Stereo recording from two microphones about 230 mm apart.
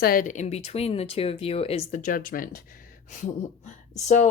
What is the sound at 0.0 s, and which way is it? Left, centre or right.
Speech, left.